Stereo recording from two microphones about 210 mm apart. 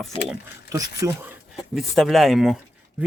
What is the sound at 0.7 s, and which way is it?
Speech, 15° right (ahead or behind).